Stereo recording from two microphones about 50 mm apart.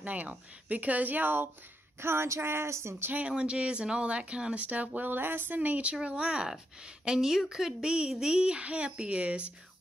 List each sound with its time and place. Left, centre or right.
0.0 s speech: right
2.0 s speech: right
3.1 s speech: right
4.6 s speech: right